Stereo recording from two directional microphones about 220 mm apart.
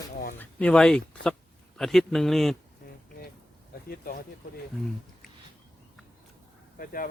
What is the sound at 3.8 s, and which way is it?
Speech, 40° left (ahead or behind).